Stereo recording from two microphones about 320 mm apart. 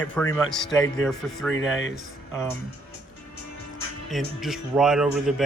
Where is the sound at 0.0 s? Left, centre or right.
Centre.